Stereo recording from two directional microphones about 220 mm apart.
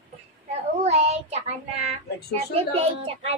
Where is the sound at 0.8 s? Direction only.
30° right (ahead or behind).